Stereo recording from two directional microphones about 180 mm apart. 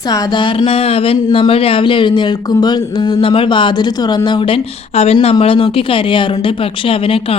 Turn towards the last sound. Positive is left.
turn(degrees=30)  # may be behind; listen again after turning